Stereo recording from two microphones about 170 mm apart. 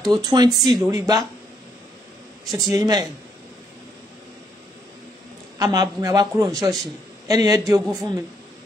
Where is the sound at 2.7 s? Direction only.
20° right (ahead or behind).